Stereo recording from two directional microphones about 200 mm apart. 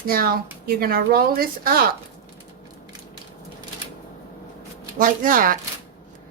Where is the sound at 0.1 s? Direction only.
45° right (ahead or behind).